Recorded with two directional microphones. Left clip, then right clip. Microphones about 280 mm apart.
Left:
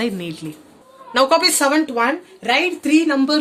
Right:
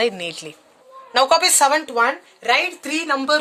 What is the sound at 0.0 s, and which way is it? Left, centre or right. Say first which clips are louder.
Speech: right 3 dB; centre.